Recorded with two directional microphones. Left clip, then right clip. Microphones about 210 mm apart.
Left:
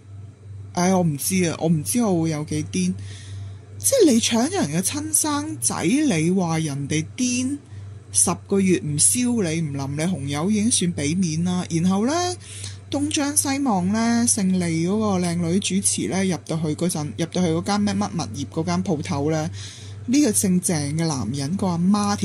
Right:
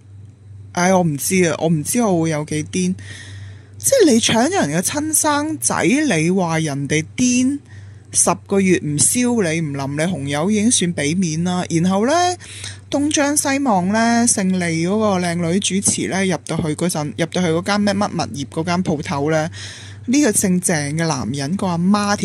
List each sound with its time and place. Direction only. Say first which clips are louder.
0.7 s speech: right 6 dB; 45° right (ahead or behind)